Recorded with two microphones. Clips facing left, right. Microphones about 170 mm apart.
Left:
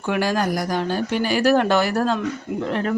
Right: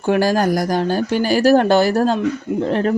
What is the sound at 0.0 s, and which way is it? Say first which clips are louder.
Speech: right 5 dB; 35° right (ahead or behind).